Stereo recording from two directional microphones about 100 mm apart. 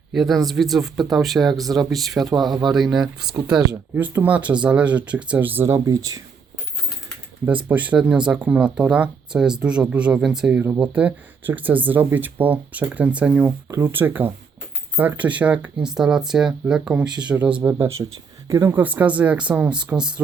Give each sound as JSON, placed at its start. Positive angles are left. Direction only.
{"t": 0.1, "sound": "speech", "side_deg": 0}
{"t": 3.9, "sound": "speech", "side_deg": -20}
{"t": 7.4, "sound": "speech", "side_deg": -15}
{"t": 10.6, "sound": "speech", "side_deg": -20}
{"t": 13.7, "sound": "speech", "side_deg": -25}
{"t": 17.7, "sound": "speech", "side_deg": -25}
{"t": 18.7, "sound": "speech", "side_deg": -15}